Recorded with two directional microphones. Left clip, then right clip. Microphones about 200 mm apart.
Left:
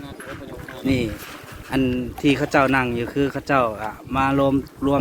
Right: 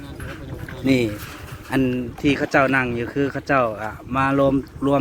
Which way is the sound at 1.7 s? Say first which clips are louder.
Right 1 dB; 15° right (ahead or behind).